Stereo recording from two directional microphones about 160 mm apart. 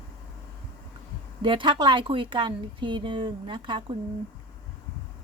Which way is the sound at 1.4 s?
30° right (ahead or behind).